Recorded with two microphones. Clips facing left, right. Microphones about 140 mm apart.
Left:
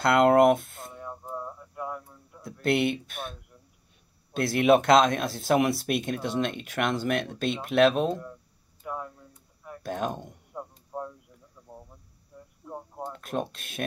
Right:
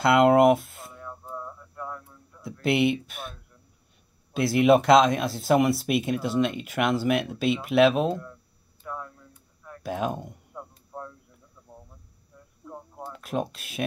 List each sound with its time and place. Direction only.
0.0 s speech: centre (ahead or behind)
0.9 s a sound: 20° left (ahead or behind)
2.6 s speech: centre (ahead or behind)
8.8 s a sound: 15° left (ahead or behind)
9.8 s speech: 5° right (ahead or behind)
10.5 s music: 15° left (ahead or behind)
12.3 s cricket: 10° left (ahead or behind)
12.6 s a sound: 20° left (ahead or behind)
13.1 s speech: 5° right (ahead or behind)